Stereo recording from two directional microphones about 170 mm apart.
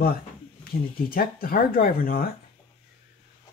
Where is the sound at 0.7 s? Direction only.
60° left (ahead or behind).